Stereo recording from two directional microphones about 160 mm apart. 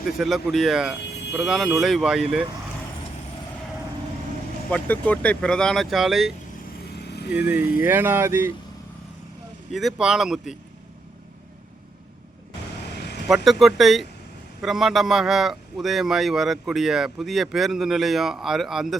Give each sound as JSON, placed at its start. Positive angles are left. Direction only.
{"t": 0.0, "sound": "a man's voice", "side_deg": 0}
{"t": 4.7, "sound": "a man's voice", "side_deg": 10}
{"t": 6.9, "sound": "vehicle", "side_deg": 90}
{"t": 7.3, "sound": "speech", "side_deg": -10}
{"t": 9.7, "sound": "a man's voice", "side_deg": 0}
{"t": 13.2, "sound": "a man's voice", "side_deg": 0}